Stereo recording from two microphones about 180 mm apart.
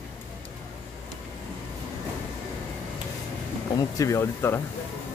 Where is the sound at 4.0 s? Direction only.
15° left (ahead or behind).